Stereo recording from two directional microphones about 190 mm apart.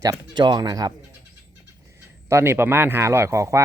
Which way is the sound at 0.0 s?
20° right (ahead or behind).